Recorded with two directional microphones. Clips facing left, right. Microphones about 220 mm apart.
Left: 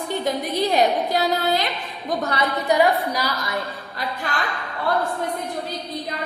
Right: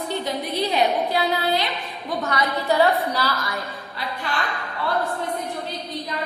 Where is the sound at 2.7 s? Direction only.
15° left (ahead or behind).